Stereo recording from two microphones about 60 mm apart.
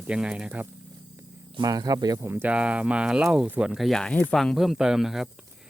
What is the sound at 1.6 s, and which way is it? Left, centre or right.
Speech, right.